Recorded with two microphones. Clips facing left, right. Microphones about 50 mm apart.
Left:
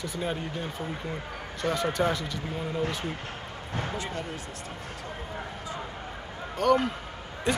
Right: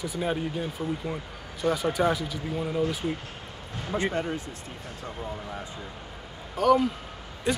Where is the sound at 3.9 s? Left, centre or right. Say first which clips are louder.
Right 6 dB; right.